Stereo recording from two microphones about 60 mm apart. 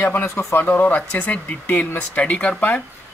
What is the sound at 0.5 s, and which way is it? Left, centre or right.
Speech, left.